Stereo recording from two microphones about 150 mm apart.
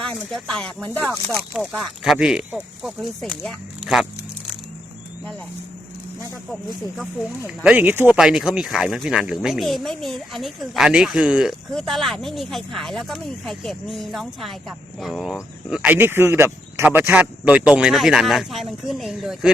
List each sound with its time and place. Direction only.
0.0 s speech: 5° left (ahead or behind)
6.5 s speech: centre (ahead or behind)
7.4 s speech: 10° right (ahead or behind)